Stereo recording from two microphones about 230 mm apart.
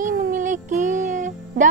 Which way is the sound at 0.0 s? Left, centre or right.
Right.